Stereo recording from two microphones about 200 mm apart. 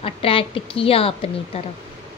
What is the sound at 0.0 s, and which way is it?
A woman's voice, 30° left (ahead or behind).